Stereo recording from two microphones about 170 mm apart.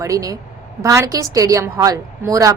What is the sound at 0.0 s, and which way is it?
A woman's voice, 20° right (ahead or behind).